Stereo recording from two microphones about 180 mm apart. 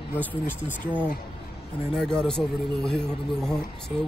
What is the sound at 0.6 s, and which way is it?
Speech, 10° right (ahead or behind).